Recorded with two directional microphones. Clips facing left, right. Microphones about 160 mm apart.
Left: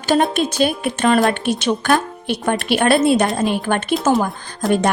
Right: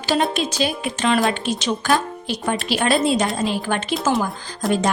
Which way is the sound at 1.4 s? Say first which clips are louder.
Left 4 dB; 55° left (ahead or behind).